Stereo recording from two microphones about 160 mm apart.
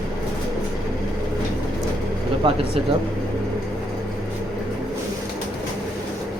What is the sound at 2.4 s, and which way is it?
Speech, 35° right (ahead or behind).